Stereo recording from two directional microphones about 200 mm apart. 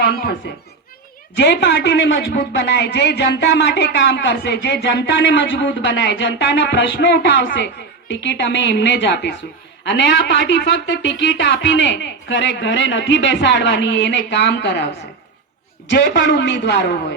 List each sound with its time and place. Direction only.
1.4 s speech: 60° left (ahead or behind)
15.9 s speech: 60° left (ahead or behind)